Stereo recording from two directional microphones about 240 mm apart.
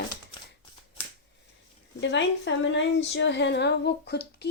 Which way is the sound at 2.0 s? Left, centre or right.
Left.